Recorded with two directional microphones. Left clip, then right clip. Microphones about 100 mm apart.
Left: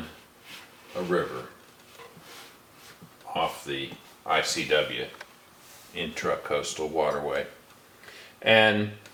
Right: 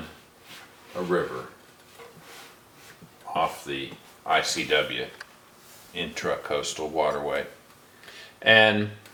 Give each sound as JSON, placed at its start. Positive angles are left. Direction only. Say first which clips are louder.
{"t": 0.9, "sound": "speech", "louder": "right 1 dB", "side_deg": -5}
{"t": 3.3, "sound": "speech", "louder": "right 2 dB", "side_deg": -15}
{"t": 8.4, "sound": "speech", "louder": "right 2 dB", "side_deg": -20}